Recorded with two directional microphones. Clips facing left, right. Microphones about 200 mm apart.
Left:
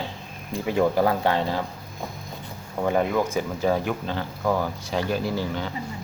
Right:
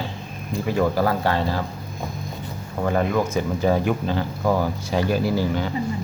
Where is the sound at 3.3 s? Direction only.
Centre (ahead or behind).